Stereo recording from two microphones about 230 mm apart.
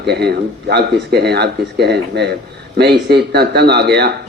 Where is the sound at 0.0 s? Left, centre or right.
Right.